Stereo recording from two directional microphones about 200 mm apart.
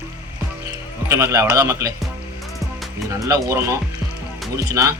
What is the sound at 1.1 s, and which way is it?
Speech, 15° right (ahead or behind).